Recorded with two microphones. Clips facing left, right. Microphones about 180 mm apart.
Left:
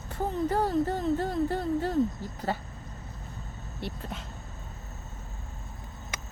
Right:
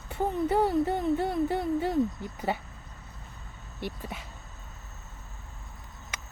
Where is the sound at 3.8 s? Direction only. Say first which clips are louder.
Right 1 dB; 10° right (ahead or behind).